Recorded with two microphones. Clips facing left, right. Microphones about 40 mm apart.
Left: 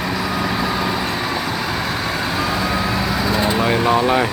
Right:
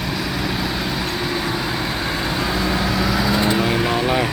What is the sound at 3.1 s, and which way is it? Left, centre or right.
Vehicle, centre.